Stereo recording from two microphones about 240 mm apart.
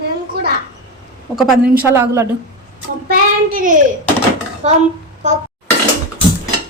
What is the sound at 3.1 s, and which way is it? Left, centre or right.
Child singing, right.